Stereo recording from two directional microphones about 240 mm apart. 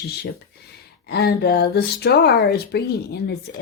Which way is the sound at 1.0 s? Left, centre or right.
Left.